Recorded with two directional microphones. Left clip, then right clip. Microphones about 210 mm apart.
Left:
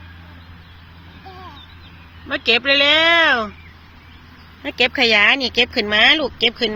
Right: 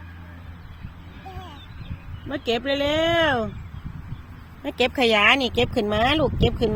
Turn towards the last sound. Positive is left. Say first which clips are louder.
# left 4 dB
turn(degrees=0)  # may be behind; listen again after turning